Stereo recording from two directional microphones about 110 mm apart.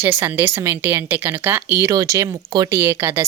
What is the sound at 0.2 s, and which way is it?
Speech, 20° right (ahead or behind).